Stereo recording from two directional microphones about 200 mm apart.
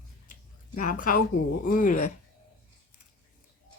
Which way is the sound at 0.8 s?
40° left (ahead or behind).